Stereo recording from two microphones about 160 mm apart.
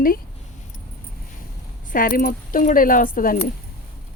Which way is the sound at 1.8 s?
55° left (ahead or behind).